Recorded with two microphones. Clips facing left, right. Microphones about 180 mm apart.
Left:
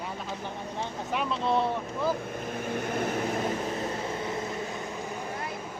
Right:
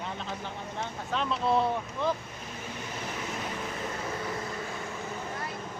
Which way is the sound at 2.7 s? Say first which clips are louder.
Left 9 dB; 55° left (ahead or behind).